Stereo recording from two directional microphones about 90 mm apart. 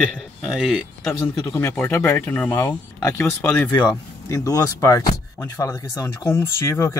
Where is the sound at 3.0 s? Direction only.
35° left (ahead or behind).